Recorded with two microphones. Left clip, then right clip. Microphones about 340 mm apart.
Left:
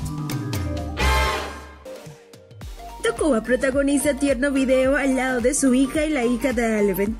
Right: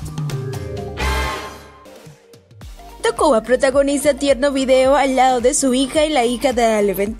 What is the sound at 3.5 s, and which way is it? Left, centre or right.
A woman's voice, centre.